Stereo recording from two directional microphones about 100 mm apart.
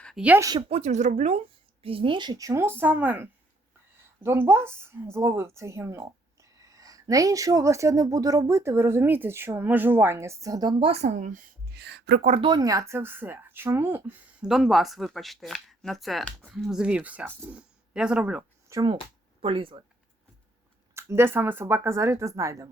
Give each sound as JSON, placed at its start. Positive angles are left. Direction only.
{"t": 0.2, "sound": "speech", "side_deg": -5}
{"t": 0.7, "sound": "speech", "side_deg": -90}
{"t": 1.8, "sound": "speech", "side_deg": -65}
{"t": 10.8, "sound": "speech", "side_deg": -65}
{"t": 12.5, "sound": "speech", "side_deg": -40}
{"t": 14.4, "sound": "speech", "side_deg": -5}
{"t": 18.7, "sound": "speech", "side_deg": -30}
{"t": 19.4, "sound": "speech", "side_deg": -60}
{"t": 20.9, "sound": "speech", "side_deg": -25}